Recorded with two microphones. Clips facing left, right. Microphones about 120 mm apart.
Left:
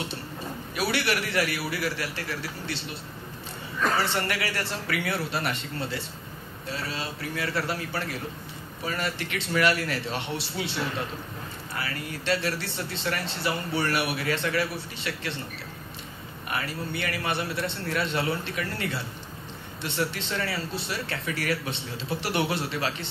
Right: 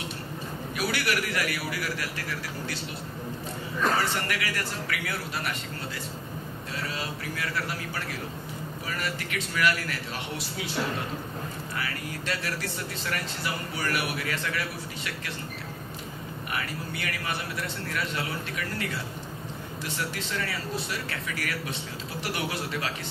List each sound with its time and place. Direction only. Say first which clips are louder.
0.7 s speech: left 2 dB; 30° left (ahead or behind)
3.9 s speech: left 1 dB; 30° left (ahead or behind)
16.5 s speech: left 4 dB; 30° left (ahead or behind)